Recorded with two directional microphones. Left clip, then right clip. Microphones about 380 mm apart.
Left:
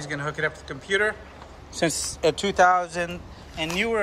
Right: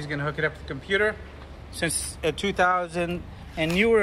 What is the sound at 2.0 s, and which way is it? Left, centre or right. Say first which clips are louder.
Speech: left 5 dB; centre.